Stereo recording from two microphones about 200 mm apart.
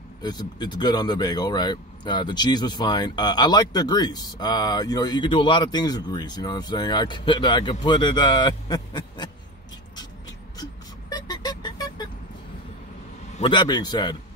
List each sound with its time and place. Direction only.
0.2 s speech: 20° left (ahead or behind)
10.6 s vehicle: 20° left (ahead or behind)
13.4 s speech: 25° left (ahead or behind)